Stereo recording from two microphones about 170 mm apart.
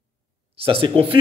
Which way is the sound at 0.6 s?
35° right (ahead or behind).